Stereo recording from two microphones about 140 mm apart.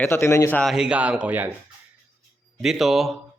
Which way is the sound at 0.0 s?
15° left (ahead or behind).